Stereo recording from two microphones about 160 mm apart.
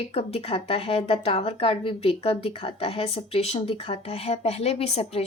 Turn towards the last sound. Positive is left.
turn(degrees=40)  # may be behind; listen again after turning